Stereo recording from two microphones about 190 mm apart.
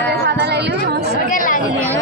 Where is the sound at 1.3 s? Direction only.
45° left (ahead or behind).